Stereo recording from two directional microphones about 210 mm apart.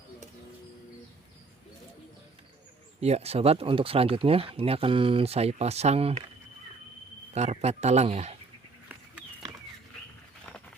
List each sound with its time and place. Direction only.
3.0 s speech: 30° right (ahead or behind)
7.3 s speech: 30° right (ahead or behind)